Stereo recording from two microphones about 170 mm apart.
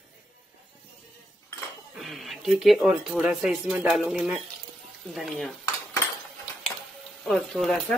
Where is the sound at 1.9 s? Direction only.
Centre (ahead or behind).